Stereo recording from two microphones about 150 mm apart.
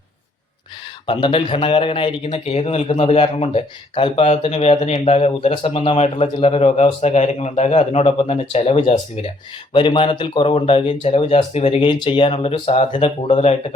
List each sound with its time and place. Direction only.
1.0 s speech: 35° left (ahead or behind)
2.3 s speech: 45° left (ahead or behind)
9.7 s speech: 35° left (ahead or behind)